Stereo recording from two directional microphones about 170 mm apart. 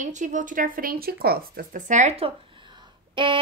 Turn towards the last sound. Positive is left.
turn(degrees=-30)  # may be behind; listen again after turning